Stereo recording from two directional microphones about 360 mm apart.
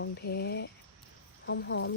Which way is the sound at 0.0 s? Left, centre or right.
Left.